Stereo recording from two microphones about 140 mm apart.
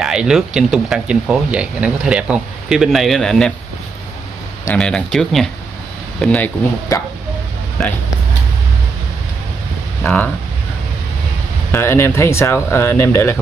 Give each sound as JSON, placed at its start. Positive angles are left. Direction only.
{"t": 0.0, "sound": "speech", "side_deg": -5}
{"t": 4.7, "sound": "speech", "side_deg": 5}
{"t": 6.9, "sound": "speech", "side_deg": 20}
{"t": 7.8, "sound": "speech", "side_deg": 5}
{"t": 10.0, "sound": "speech", "side_deg": 10}
{"t": 11.7, "sound": "speech", "side_deg": 15}